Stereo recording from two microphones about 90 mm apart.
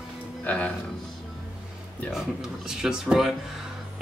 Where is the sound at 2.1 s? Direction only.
5° right (ahead or behind).